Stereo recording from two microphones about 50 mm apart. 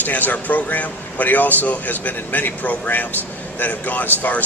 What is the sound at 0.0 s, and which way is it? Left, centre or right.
Speech, left.